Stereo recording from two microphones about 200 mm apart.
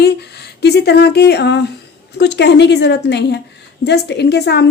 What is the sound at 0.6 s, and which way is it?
A woman's voice, 55° left (ahead or behind).